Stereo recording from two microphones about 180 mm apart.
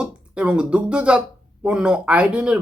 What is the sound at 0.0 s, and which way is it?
Speech, 5° right (ahead or behind).